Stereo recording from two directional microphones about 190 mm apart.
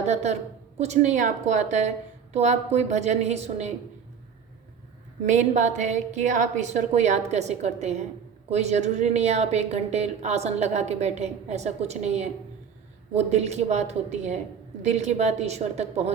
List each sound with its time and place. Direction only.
0.0 s a woman's voice: 35° right (ahead or behind)
5.2 s a woman's voice: 40° right (ahead or behind)